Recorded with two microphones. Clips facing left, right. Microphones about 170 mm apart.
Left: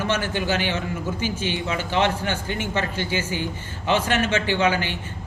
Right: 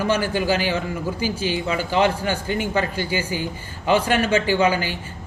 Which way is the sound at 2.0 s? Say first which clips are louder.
Right 2 dB; 10° right (ahead or behind).